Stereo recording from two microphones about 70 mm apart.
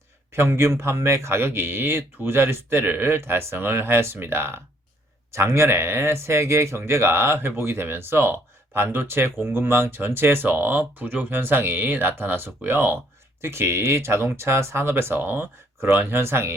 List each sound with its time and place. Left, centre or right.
0.3 s speech: right